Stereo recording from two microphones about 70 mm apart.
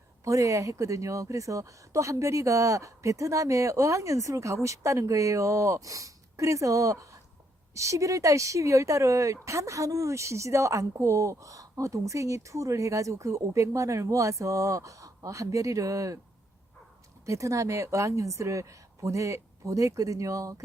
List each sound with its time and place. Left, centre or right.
0.3 s speech: right
17.2 s speech: right